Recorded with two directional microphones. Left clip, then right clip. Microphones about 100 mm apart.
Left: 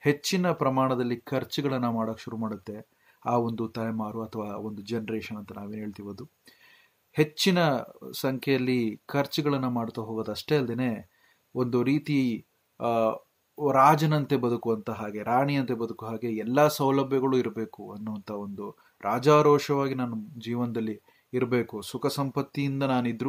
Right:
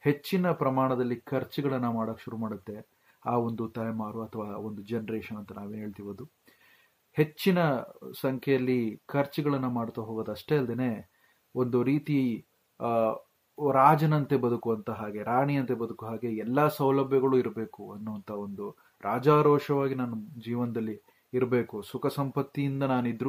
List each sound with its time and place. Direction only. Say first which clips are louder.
0.0 s speech: left 2 dB; 30° left (ahead or behind)